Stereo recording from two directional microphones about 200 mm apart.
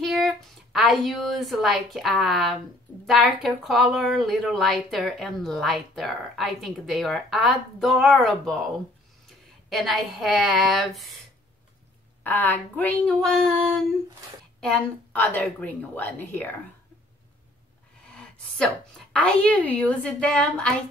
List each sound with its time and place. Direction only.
0.0 s a sound: centre (ahead or behind)
0.7 s speech: centre (ahead or behind)
9.7 s speech: centre (ahead or behind)
12.2 s a woman's voice: 10° left (ahead or behind)
18.0 s a sound: 5° left (ahead or behind)
19.1 s speech: 5° left (ahead or behind)